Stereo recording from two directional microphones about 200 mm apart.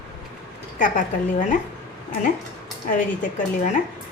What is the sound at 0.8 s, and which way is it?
Speech, 40° left (ahead or behind).